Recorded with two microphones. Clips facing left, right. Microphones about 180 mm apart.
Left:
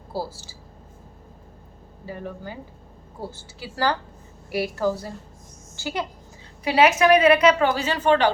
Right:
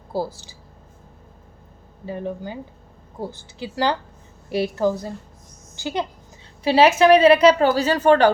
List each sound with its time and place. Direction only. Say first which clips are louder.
0.1 s a woman's voice: right 4 dB; 20° right (ahead or behind)
2.0 s a woman's voice: right 5 dB; 20° right (ahead or behind); by 8.3 s 45° right (ahead or behind)